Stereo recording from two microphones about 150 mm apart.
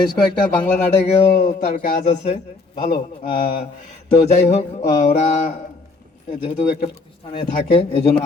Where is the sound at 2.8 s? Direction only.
90° left.